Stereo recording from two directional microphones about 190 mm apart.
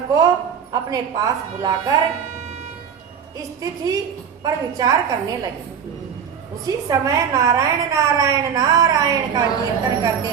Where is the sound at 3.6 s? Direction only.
20° right (ahead or behind).